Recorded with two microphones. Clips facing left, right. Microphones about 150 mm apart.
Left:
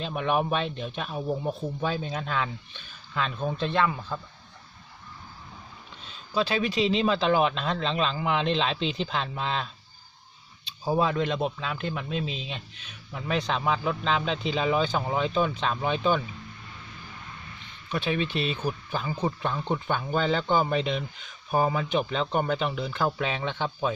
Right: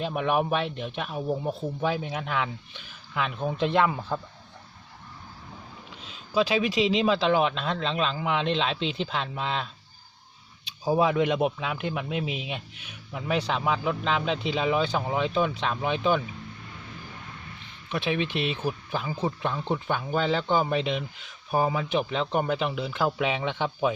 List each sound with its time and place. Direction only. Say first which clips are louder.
0.0 s speech: right 1 dB; 5° right (ahead or behind)
6.1 s speech: right 3 dB; 10° right (ahead or behind)
10.8 s speech: right 2 dB; 10° right (ahead or behind)
17.9 s speech: even; 5° right (ahead or behind)